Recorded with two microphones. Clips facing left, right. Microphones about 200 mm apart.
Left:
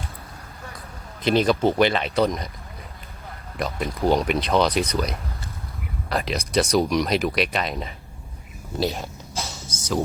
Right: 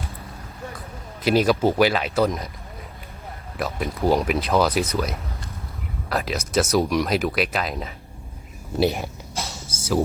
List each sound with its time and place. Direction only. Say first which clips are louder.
1.2 s speech: right 1 dB; 5° right (ahead or behind)
3.6 s speech: even; centre (ahead or behind)
8.8 s speech: right 4 dB; 15° right (ahead or behind)
9.6 s music: right 1 dB; 30° right (ahead or behind)